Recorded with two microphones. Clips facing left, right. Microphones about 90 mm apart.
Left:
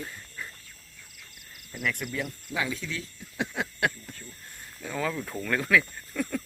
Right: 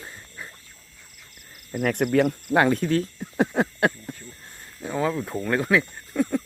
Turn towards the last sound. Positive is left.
turn(degrees=-25)  # may be behind; listen again after turning